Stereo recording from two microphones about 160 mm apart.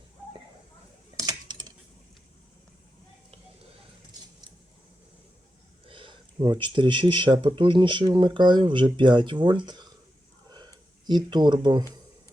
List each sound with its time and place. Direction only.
1.1 s typing: 25° right (ahead or behind)
5.9 s speech: 30° right (ahead or behind)
10.5 s a sound: 25° right (ahead or behind)